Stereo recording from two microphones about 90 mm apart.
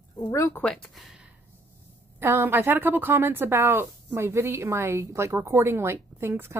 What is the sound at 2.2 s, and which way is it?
A woman's voice, 25° right (ahead or behind).